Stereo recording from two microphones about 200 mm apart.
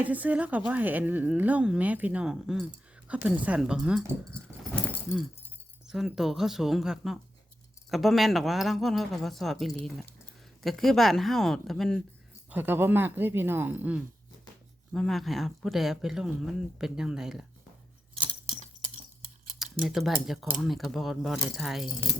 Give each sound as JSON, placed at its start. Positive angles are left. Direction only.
{"t": 0.0, "sound": "a woman's voice", "side_deg": -5}
{"t": 4.4, "sound": "speech", "side_deg": 5}
{"t": 12.5, "sound": "a woman's voice", "side_deg": -10}
{"t": 18.1, "sound": "keys jangling", "side_deg": -25}
{"t": 18.6, "sound": "a sound", "side_deg": -35}
{"t": 19.5, "sound": "speech", "side_deg": 0}